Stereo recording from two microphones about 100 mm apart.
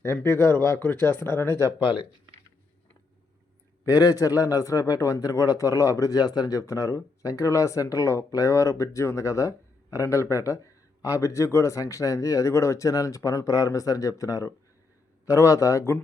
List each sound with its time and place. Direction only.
0.0 s speech: 25° left (ahead or behind)
3.8 s a man's voice: 40° left (ahead or behind)